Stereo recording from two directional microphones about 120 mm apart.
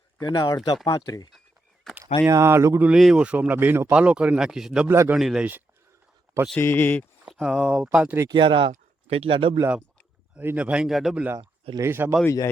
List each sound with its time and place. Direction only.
0.2 s speech: 35° left (ahead or behind)
2.2 s speech: 25° right (ahead or behind)
2.8 s speech: 5° right (ahead or behind)
4.9 s speech: 20° right (ahead or behind)
5.1 s speech: 5° right (ahead or behind)
6.6 s speech: 20° left (ahead or behind)
7.3 s speech: centre (ahead or behind)
7.9 s speech: 10° right (ahead or behind)
8.3 s speech: 45° right (ahead or behind)
8.7 s speech: 55° right (ahead or behind)
10.3 s speech: 10° right (ahead or behind)
12.2 s speech: 25° left (ahead or behind)